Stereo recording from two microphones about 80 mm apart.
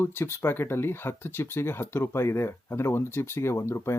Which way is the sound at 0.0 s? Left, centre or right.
Left.